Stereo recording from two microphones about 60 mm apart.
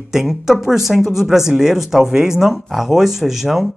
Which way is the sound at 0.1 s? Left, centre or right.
Centre.